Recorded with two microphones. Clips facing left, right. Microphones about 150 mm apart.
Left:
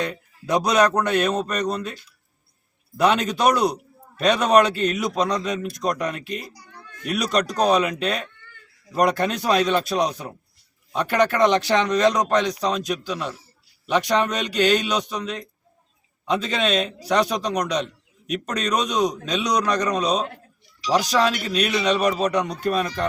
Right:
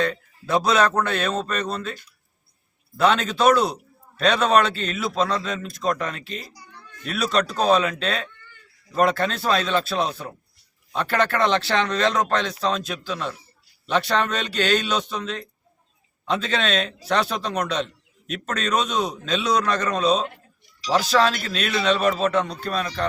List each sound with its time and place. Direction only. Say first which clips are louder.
0.0 s speech: right 3 dB; 15° left (ahead or behind)
3.0 s speech: even; 15° left (ahead or behind)